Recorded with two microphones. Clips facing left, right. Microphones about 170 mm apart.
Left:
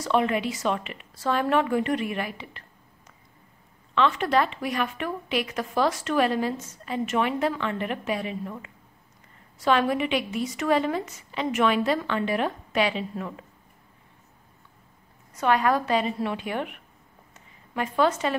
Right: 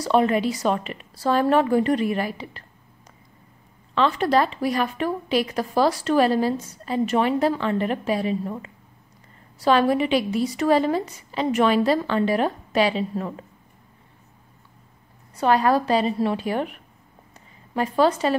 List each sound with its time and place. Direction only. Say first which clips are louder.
0.0 s speech: right 4 dB; 35° right (ahead or behind)
3.9 s speech: right 3 dB; 35° right (ahead or behind)
15.3 s speech: right 3 dB; 35° right (ahead or behind)